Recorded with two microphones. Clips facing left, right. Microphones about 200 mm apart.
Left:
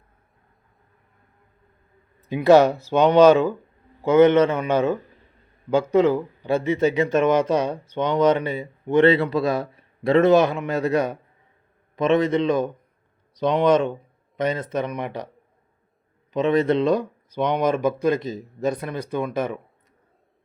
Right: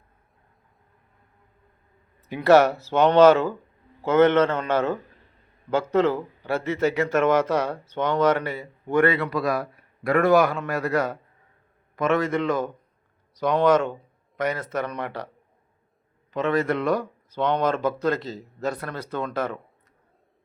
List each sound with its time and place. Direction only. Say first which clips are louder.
2.2 s speech: left 2 dB; 15° left (ahead or behind)
16.3 s speech: left 4 dB; 20° left (ahead or behind)